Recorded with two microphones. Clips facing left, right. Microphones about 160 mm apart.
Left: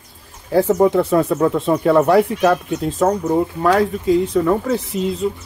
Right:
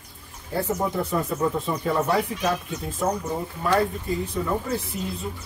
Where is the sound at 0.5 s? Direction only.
90° left.